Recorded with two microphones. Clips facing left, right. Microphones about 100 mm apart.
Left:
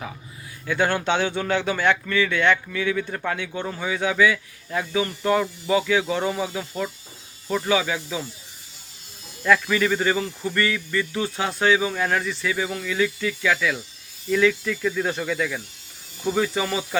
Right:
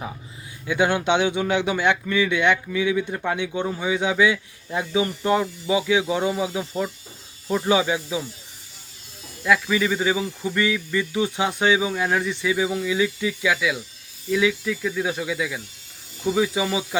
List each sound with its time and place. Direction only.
0.6 s speech: 15° right (ahead or behind)
9.4 s speech: 10° right (ahead or behind)